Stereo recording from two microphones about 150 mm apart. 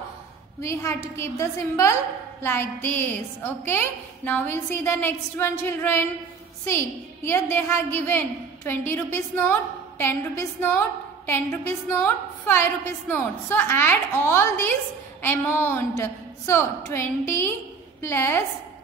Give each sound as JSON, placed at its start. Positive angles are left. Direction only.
{"t": 0.6, "sound": "a woman's voice", "side_deg": 20}